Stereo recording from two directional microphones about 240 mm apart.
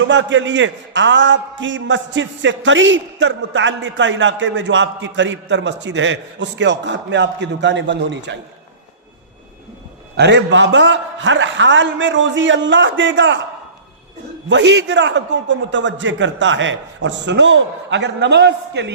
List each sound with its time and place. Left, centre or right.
0.1 s a man's voice: right
10.2 s a man's voice: right
14.5 s a man's voice: right